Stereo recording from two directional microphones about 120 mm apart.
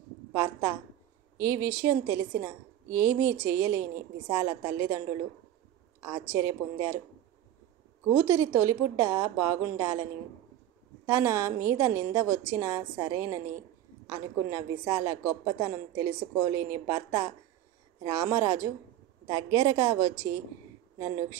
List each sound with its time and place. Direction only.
0.3 s a woman's voice: 25° right (ahead or behind)
8.1 s a woman's voice: 20° right (ahead or behind)
11.1 s a woman's voice: 25° right (ahead or behind)